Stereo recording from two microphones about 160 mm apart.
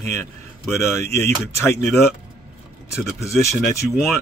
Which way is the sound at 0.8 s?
15° left (ahead or behind).